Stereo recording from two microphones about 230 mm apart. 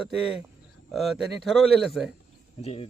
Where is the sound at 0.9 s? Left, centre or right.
Centre.